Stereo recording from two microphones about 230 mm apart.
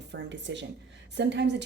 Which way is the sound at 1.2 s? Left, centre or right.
Right.